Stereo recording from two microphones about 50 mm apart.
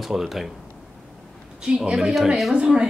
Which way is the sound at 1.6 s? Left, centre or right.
Centre.